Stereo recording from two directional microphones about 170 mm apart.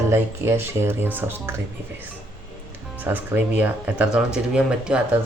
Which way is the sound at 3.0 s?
10° right (ahead or behind).